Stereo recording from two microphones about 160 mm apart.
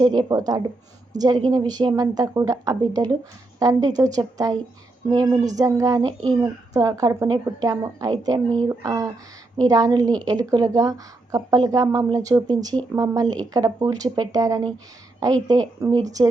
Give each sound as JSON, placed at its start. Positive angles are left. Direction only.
{"t": 0.0, "sound": "a woman's voice", "side_deg": -25}